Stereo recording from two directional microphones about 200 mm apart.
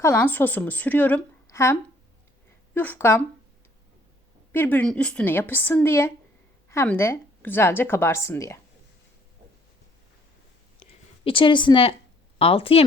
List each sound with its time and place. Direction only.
0.0 s a woman's voice: 10° left (ahead or behind)
4.5 s a woman's voice: 10° left (ahead or behind)
10.8 s a sound: 25° left (ahead or behind)
12.4 s speech: 30° left (ahead or behind)